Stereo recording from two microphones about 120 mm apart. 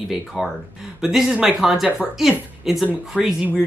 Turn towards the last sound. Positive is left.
turn(degrees=-5)  # may be behind; listen again after turning